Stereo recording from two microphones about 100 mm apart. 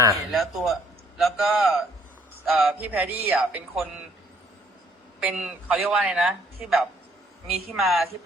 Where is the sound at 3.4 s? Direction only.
5° right (ahead or behind).